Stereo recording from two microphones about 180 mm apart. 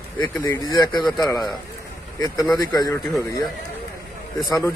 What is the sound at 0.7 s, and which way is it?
Speech, 25° left (ahead or behind).